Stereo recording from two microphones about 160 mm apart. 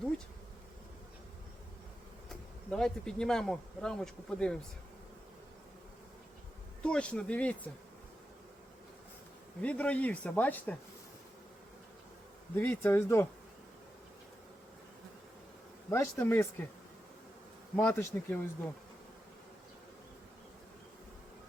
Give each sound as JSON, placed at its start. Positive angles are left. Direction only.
{"t": 2.6, "sound": "speech", "side_deg": 5}
{"t": 6.8, "sound": "speech", "side_deg": 5}
{"t": 9.6, "sound": "speech", "side_deg": 10}
{"t": 12.5, "sound": "speech", "side_deg": 15}
{"t": 15.9, "sound": "speech", "side_deg": 15}
{"t": 17.8, "sound": "speech", "side_deg": 10}